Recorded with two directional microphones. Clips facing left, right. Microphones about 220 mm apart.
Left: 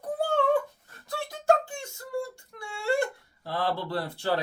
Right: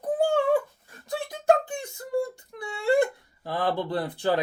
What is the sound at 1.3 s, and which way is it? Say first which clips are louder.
Music: right 2 dB; 20° right (ahead or behind).